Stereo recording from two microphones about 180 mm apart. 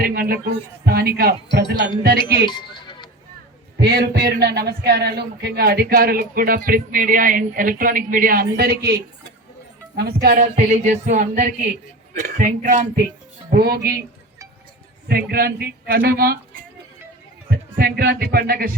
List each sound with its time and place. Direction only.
0.0 s a sound: 55° right (ahead or behind)
0.9 s a man's voice: 60° right (ahead or behind)
2.5 s music: 25° left (ahead or behind)
3.8 s a man's voice: 65° right (ahead or behind)
10.5 s music: 40° right (ahead or behind)
13.5 s a man's voice: 60° right (ahead or behind)
15.0 s a man's voice: 60° right (ahead or behind)
17.7 s a man's voice: 55° right (ahead or behind)